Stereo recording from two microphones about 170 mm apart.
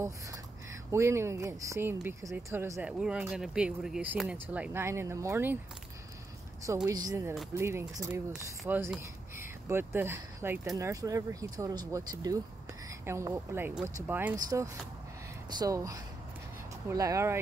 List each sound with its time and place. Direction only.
0.9 s speech: 15° right (ahead or behind)
6.7 s speech: 15° right (ahead or behind)